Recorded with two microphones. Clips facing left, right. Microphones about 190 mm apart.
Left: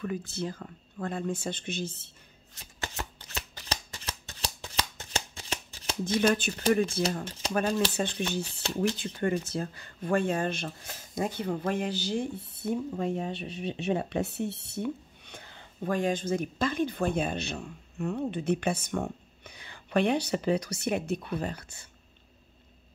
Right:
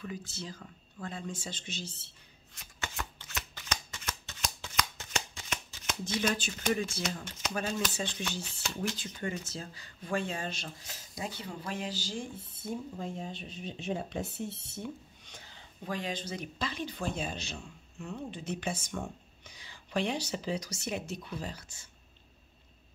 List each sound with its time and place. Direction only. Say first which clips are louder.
0.0 s speech: left 8 dB; 55° left (ahead or behind)
2.6 s shuffling cards: left 3 dB; 30° left (ahead or behind)
6.2 s speech: left 6 dB; 55° left (ahead or behind)